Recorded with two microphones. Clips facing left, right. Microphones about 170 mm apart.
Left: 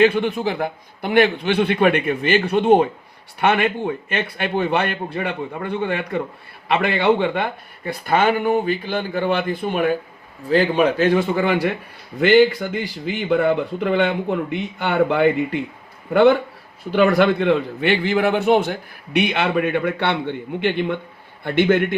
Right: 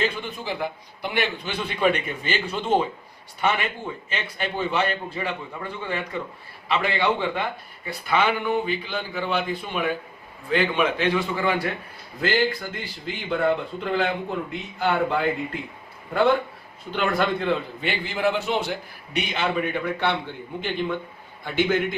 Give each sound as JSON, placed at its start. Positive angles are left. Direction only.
{"t": 0.0, "sound": "a man's voice", "side_deg": 65}
{"t": 10.5, "sound": "a man's voice", "side_deg": 40}